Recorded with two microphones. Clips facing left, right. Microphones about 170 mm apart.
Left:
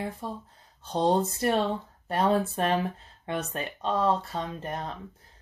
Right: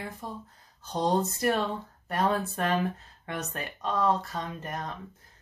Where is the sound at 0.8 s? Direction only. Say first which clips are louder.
Left 2 dB; 25° left (ahead or behind).